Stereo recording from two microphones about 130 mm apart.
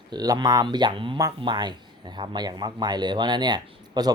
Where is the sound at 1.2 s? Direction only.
30° right (ahead or behind).